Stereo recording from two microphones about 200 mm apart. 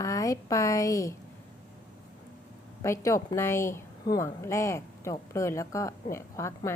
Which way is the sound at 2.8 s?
15° left (ahead or behind).